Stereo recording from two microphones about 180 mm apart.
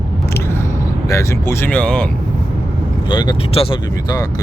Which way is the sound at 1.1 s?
15° left (ahead or behind).